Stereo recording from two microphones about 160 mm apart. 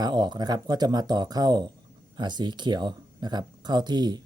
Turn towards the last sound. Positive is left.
turn(degrees=-25)  # may be behind; listen again after turning